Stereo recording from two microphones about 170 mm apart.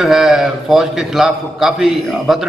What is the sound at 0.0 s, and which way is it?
A man's voice, centre (ahead or behind).